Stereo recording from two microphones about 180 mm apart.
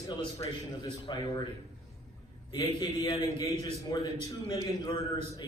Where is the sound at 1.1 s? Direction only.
25° left (ahead or behind).